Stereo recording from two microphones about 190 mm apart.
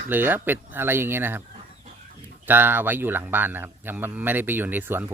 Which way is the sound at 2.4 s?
10° right (ahead or behind).